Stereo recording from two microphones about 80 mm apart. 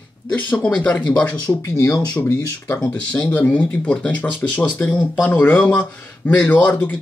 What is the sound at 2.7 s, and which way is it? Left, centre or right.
Speech, left.